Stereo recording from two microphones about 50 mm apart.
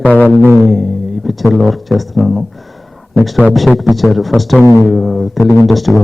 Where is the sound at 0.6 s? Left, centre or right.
Centre.